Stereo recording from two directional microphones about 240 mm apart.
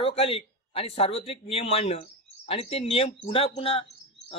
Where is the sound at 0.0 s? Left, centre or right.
Left.